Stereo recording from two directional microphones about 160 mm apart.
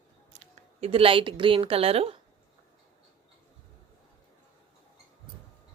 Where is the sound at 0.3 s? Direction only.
40° right (ahead or behind).